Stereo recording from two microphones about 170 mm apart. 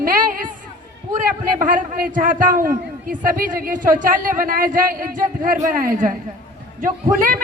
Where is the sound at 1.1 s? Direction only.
50° right (ahead or behind).